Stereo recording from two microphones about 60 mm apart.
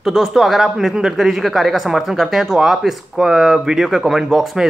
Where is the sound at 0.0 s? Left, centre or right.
Centre.